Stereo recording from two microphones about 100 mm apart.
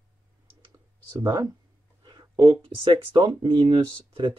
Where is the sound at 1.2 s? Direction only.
40° right (ahead or behind).